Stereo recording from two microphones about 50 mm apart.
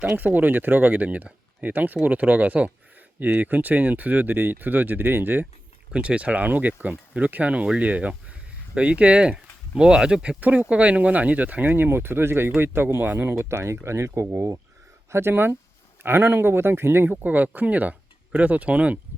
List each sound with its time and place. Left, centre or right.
0.2 s speech: right
5.9 s speech: right
10.4 s speech: right
11.9 s speech: right
13.3 s speech: right
15.1 s speech: right